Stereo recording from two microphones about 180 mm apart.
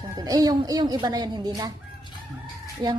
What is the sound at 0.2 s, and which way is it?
Speech, 20° right (ahead or behind).